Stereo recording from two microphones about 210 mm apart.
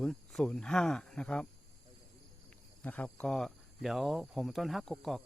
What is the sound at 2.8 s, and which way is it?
Speech, 5° left (ahead or behind).